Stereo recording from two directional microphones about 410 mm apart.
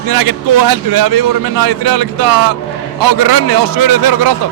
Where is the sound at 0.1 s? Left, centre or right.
Right.